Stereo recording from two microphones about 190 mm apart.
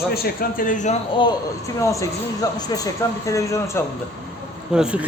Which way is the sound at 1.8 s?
15° left (ahead or behind).